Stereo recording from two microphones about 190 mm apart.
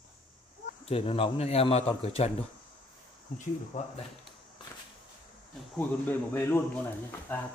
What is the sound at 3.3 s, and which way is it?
Speech, 40° left (ahead or behind).